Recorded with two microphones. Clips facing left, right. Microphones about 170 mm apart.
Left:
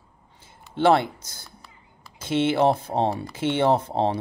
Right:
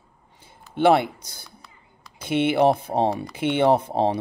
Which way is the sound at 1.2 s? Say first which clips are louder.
Right 1 dB; 60° right (ahead or behind).